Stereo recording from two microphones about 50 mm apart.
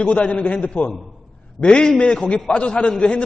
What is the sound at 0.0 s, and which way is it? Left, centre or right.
A woman's voice, left.